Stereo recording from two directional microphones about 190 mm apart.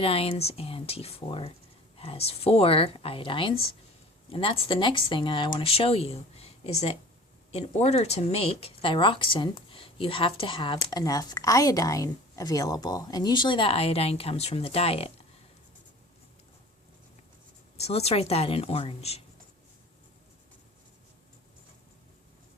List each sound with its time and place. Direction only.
0.0 s speech: 30° left (ahead or behind)
17.7 s speech: 35° left (ahead or behind)